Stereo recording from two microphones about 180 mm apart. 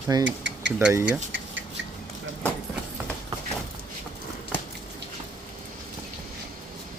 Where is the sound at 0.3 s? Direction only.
90° right.